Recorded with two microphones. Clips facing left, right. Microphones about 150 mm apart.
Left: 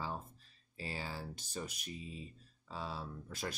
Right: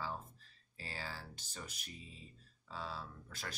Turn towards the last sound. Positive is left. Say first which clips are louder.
# left 6 dB
turn(degrees=15)  # may be behind; listen again after turning